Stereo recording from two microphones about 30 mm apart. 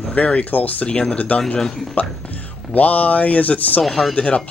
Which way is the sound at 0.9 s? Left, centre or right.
Left.